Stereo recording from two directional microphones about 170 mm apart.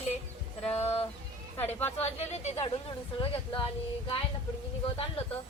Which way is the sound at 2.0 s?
40° left (ahead or behind).